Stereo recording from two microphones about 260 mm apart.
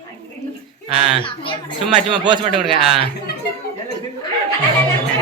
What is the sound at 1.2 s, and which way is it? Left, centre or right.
Speech, centre.